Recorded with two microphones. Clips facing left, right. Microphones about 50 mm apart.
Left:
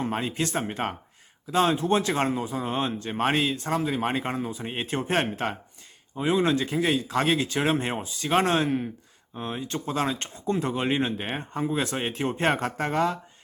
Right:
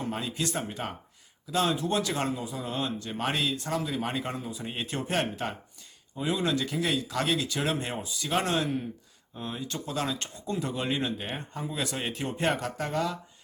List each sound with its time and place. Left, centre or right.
0.0 s speech: left